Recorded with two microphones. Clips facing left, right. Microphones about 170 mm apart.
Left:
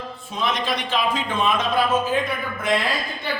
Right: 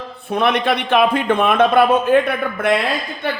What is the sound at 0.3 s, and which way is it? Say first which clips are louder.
A man's voice: right 8 dB; 60° right (ahead or behind).